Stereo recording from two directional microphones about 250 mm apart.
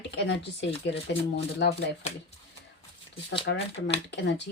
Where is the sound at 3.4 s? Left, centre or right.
Left.